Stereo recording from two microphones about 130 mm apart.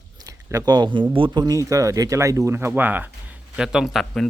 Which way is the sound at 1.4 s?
25° right (ahead or behind).